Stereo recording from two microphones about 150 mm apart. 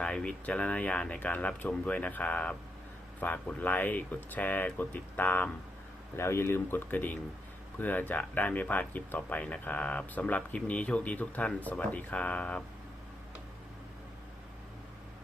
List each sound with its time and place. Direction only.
0.0 s speech: 5° left (ahead or behind)